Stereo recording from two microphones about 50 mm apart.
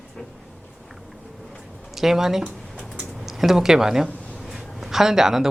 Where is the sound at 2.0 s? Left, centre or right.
Centre.